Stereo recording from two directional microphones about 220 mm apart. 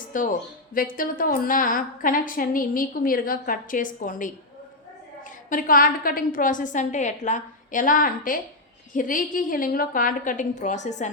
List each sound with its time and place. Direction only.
0.1 s a woman's voice: 35° left (ahead or behind)
5.5 s a woman's voice: 40° left (ahead or behind)